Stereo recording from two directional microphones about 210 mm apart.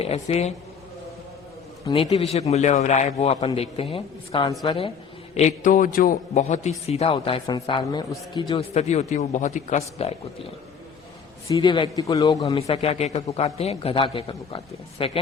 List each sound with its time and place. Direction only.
0.0 s a man's voice: 30° left (ahead or behind)
1.9 s a man's voice: 30° left (ahead or behind)
11.5 s a man's voice: 20° left (ahead or behind)
12.5 s a man's voice: 30° left (ahead or behind)